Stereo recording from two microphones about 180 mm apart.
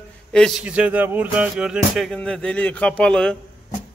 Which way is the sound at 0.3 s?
Centre (ahead or behind).